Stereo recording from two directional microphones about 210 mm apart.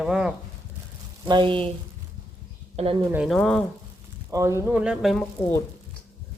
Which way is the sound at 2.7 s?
25° right (ahead or behind).